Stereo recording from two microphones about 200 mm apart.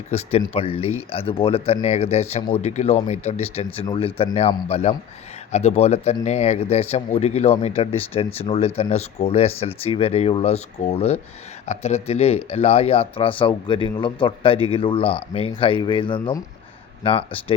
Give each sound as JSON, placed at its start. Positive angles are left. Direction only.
{"t": 0.1, "sound": "speech", "side_deg": 30}